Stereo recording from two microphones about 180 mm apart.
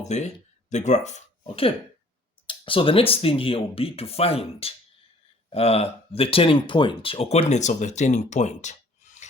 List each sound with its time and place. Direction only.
0.0 s speech: 40° left (ahead or behind)